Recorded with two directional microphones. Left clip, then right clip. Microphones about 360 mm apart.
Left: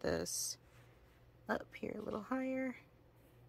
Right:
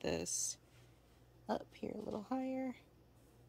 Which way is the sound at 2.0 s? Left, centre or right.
Centre.